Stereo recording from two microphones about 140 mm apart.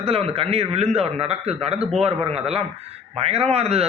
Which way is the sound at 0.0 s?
45° right (ahead or behind).